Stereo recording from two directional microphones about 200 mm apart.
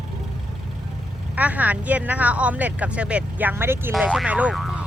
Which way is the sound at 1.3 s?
5° right (ahead or behind).